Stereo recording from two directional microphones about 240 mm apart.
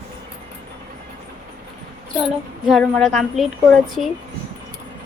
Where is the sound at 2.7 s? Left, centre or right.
Centre.